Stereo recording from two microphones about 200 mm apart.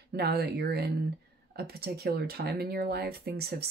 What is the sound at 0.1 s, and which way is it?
Speech, 55° right (ahead or behind).